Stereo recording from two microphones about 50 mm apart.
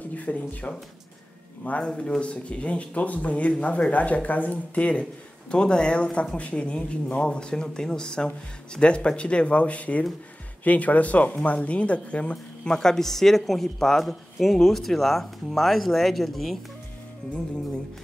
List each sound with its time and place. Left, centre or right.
0.1 s speech: left
1.9 s a woman's voice: centre